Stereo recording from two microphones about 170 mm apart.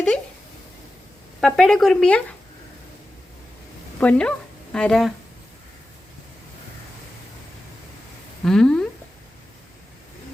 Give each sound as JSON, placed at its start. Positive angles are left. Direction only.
{"t": 1.4, "sound": "speech", "side_deg": 0}
{"t": 4.0, "sound": "speech", "side_deg": 5}
{"t": 8.4, "sound": "speech", "side_deg": 5}